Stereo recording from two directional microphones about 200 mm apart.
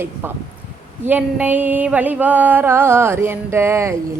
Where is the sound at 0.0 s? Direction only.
10° right (ahead or behind).